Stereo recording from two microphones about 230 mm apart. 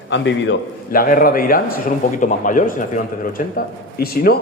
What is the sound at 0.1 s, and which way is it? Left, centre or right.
Speech, left.